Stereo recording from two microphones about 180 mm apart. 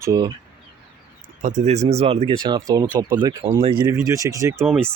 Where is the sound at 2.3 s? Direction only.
20° right (ahead or behind).